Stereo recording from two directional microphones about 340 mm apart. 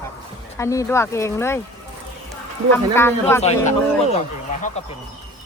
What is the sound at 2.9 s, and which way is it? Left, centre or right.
Speech, centre.